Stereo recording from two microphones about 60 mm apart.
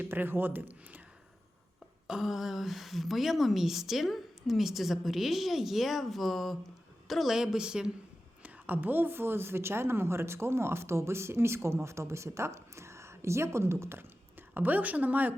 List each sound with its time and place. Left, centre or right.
0.0 s speech: right
2.0 s a woman's voice: centre
8.4 s speech: right